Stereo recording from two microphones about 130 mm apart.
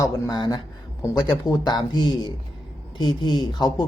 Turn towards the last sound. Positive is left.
turn(degrees=35)  # may be behind; listen again after turning